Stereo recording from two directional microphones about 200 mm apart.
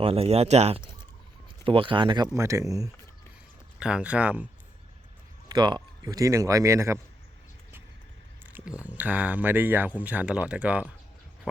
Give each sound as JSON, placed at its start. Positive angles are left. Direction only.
{"t": 0.0, "sound": "speech", "side_deg": -30}
{"t": 3.8, "sound": "speech", "side_deg": -5}
{"t": 5.5, "sound": "speech", "side_deg": -20}
{"t": 8.4, "sound": "speech", "side_deg": -5}